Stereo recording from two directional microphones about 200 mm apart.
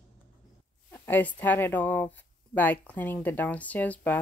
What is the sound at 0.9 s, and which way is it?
Speech, 10° left (ahead or behind).